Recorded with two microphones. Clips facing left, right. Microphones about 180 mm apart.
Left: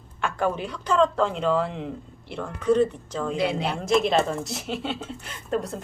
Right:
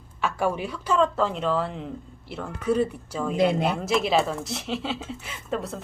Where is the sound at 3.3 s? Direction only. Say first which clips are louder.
Right 5 dB; 50° right (ahead or behind).